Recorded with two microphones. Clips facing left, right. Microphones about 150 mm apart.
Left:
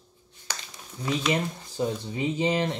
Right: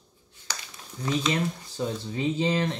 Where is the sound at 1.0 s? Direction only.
10° left (ahead or behind).